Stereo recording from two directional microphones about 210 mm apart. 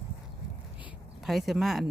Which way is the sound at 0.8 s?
Centre (ahead or behind).